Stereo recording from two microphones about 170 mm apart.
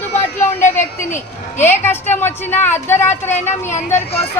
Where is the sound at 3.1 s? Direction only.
45° left (ahead or behind).